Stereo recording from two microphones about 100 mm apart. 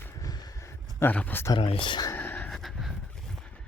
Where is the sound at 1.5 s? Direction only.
60° left (ahead or behind).